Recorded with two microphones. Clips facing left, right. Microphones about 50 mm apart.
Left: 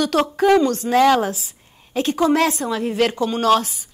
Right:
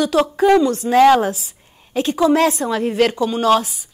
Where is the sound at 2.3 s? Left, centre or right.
Right.